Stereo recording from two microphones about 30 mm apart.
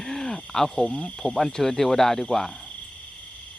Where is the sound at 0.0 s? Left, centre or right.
Centre.